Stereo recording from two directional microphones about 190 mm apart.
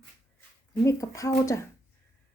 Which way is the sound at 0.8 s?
15° left (ahead or behind).